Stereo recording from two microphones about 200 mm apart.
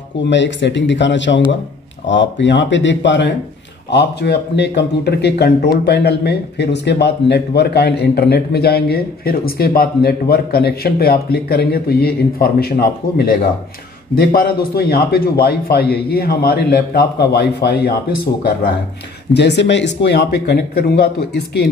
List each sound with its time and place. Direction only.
0.3 s speech: 60° left (ahead or behind)
19.3 s speech: 60° left (ahead or behind)